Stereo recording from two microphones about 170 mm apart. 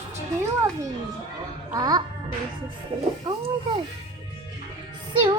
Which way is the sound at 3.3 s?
25° right (ahead or behind).